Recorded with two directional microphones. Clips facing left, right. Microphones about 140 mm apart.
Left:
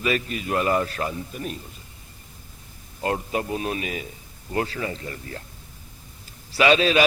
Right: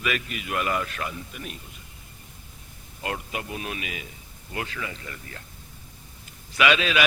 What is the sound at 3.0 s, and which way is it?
A man's voice, 35° left (ahead or behind).